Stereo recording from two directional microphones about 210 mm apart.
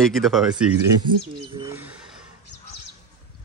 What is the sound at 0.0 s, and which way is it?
Speech, centre (ahead or behind).